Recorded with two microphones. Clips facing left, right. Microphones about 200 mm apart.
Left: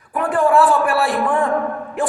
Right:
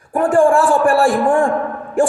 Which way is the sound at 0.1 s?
45° right (ahead or behind).